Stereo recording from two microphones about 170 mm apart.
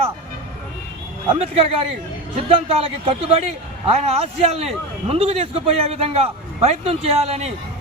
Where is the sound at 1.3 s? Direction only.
35° right (ahead or behind).